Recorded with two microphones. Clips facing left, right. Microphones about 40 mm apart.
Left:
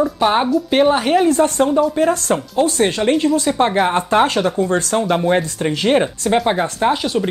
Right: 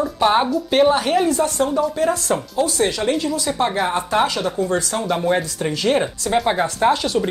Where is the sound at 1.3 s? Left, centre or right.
Left; by 5.4 s centre.